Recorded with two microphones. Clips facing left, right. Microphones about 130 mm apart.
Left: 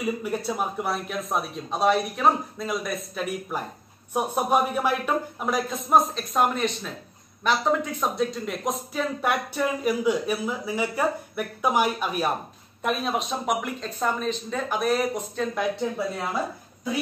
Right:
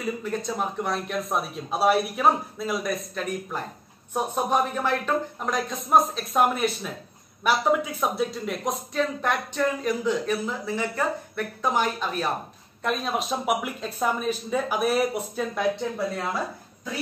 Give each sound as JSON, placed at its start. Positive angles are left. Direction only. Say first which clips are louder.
{"t": 0.0, "sound": "speech", "louder": "left 1 dB", "side_deg": 10}
{"t": 12.8, "sound": "speech", "louder": "left 1 dB", "side_deg": 0}